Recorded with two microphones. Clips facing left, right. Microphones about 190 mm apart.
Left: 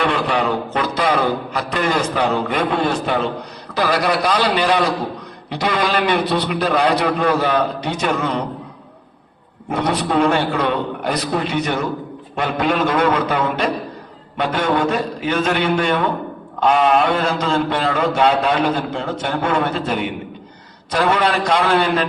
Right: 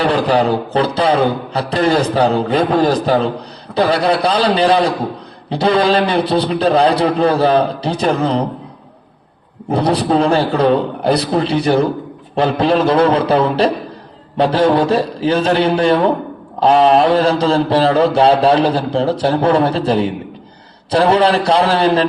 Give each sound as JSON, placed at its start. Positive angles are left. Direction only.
{"t": 0.0, "sound": "mantra", "side_deg": -35}
{"t": 9.6, "sound": "mantra", "side_deg": -35}